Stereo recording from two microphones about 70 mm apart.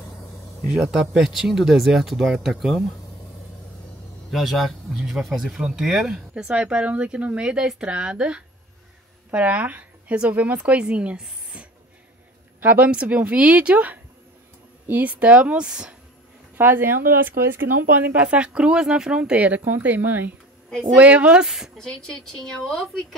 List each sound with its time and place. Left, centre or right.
0.7 s speech: centre
4.3 s speech: centre
11.5 s a sound: centre
12.5 s speech: right
16.5 s speech: right
17.9 s speech: right
21.7 s speech: centre